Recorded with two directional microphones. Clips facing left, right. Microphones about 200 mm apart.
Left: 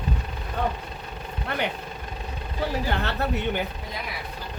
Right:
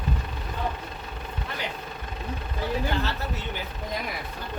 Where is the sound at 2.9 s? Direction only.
60° left (ahead or behind).